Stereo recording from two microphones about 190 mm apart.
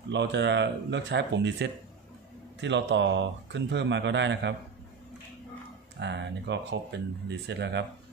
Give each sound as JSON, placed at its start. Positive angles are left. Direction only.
{"t": 0.1, "sound": "speech", "side_deg": -65}
{"t": 5.9, "sound": "speech", "side_deg": -65}